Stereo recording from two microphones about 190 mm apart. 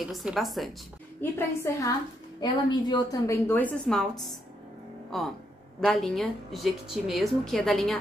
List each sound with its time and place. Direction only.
0.1 s a woman's voice: centre (ahead or behind)
1.2 s a woman's voice: 15° left (ahead or behind)